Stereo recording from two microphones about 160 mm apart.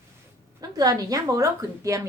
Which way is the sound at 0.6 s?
25° right (ahead or behind).